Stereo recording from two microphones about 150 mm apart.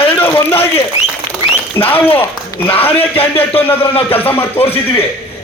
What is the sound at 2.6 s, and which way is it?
Speech, 40° left (ahead or behind).